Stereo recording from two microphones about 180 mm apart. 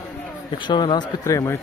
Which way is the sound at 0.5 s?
25° left (ahead or behind).